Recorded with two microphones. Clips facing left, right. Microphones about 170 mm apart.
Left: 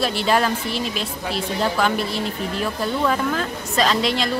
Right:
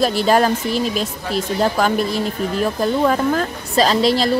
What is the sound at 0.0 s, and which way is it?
Speech, 40° right (ahead or behind).